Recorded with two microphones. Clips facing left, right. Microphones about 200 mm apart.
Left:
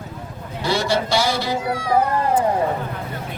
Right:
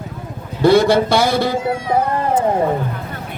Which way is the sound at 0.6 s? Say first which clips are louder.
Right 9 dB; 55° right (ahead or behind).